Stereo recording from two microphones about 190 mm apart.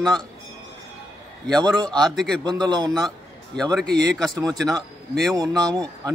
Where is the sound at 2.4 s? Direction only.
20° right (ahead or behind).